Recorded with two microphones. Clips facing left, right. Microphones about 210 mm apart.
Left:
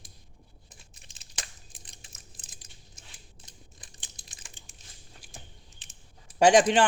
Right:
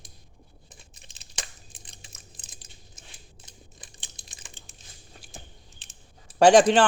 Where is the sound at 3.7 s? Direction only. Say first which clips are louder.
Right 3 dB; 25° right (ahead or behind).